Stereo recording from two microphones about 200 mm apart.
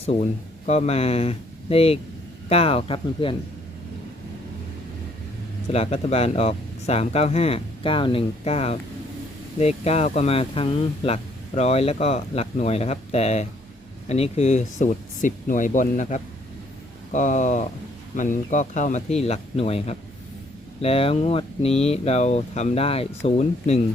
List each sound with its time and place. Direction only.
0.0 s speech: 30° left (ahead or behind)
5.7 s speech: 30° left (ahead or behind)